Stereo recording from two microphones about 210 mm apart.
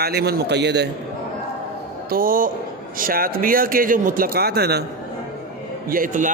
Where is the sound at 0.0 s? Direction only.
50° right (ahead or behind).